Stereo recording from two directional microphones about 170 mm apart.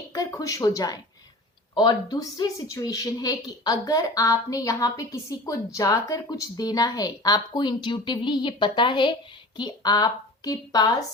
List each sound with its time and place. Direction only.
0.1 s a woman's voice: 20° left (ahead or behind)